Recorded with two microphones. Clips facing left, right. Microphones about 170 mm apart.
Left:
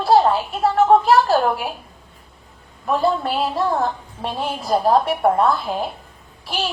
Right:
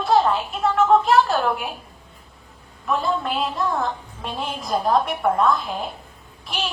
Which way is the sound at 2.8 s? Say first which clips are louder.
Left 4 dB; 35° left (ahead or behind).